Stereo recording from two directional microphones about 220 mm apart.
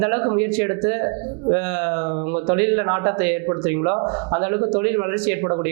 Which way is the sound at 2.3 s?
25° right (ahead or behind).